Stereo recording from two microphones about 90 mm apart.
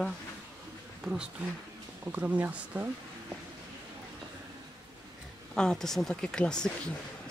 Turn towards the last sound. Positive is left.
turn(degrees=10)  # may be behind; listen again after turning